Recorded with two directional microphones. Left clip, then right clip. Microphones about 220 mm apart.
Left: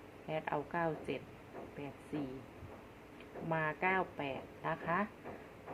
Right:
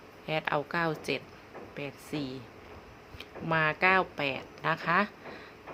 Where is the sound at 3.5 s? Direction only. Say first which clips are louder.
Right 9 dB; 30° right (ahead or behind).